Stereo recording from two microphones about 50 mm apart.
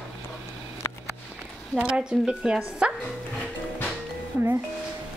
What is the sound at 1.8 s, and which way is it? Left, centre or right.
Speech, centre.